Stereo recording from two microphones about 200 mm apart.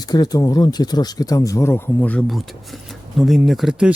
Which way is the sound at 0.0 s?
20° left (ahead or behind).